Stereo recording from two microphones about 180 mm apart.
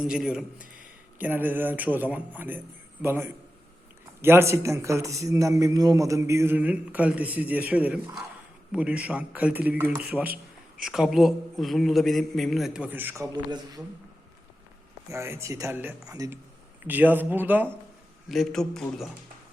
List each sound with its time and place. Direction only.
0.0 s a man's voice: 5° right (ahead or behind)
10.2 s a sound: 50° right (ahead or behind)
10.8 s a man's voice: centre (ahead or behind); by 13.8 s 20° right (ahead or behind)
15.1 s a man's voice: 15° right (ahead or behind)
18.3 s a man's voice: centre (ahead or behind)